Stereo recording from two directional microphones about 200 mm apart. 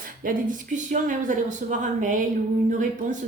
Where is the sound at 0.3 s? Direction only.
40° right (ahead or behind).